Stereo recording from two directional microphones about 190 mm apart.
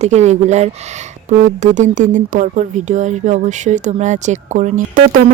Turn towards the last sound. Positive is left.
turn(degrees=-45)  # may be behind; listen again after turning